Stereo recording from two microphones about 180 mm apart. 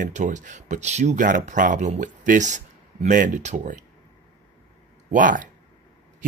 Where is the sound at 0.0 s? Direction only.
40° right (ahead or behind).